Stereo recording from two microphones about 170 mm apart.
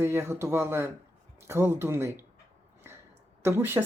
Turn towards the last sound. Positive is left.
turn(degrees=-15)  # may be behind; listen again after turning